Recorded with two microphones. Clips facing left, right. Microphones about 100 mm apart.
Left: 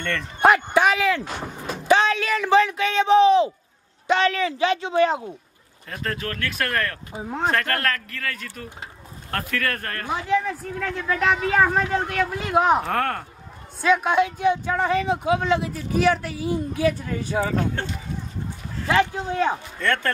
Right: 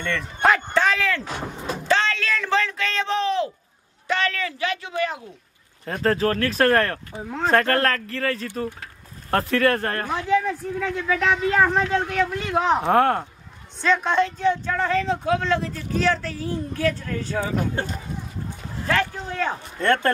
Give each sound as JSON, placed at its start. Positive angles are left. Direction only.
{"t": 0.0, "sound": "a woman's voice", "side_deg": 0}
{"t": 0.4, "sound": "a sound", "side_deg": 10}
{"t": 1.9, "sound": "speech", "side_deg": 15}
{"t": 5.9, "sound": "speech", "side_deg": -35}
{"t": 10.0, "sound": "a woman's voice", "side_deg": 5}
{"t": 12.8, "sound": "speech", "side_deg": -20}
{"t": 13.7, "sound": "a woman's voice", "side_deg": 10}
{"t": 17.8, "sound": "speech", "side_deg": -10}
{"t": 18.9, "sound": "a woman's voice", "side_deg": 15}
{"t": 19.8, "sound": "speech", "side_deg": -30}